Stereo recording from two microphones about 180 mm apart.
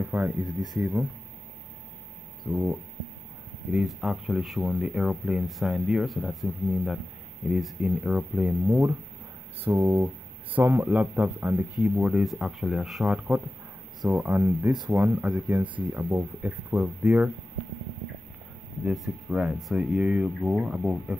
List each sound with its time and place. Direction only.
0.1 s speech: 5° right (ahead or behind)
2.5 s speech: 15° right (ahead or behind)
3.7 s speech: centre (ahead or behind)
14.2 s speech: 10° right (ahead or behind)
15.1 s speech: 5° right (ahead or behind)
18.9 s speech: centre (ahead or behind)